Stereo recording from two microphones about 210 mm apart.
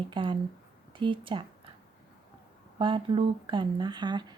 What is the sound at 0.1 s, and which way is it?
Speech, 25° right (ahead or behind).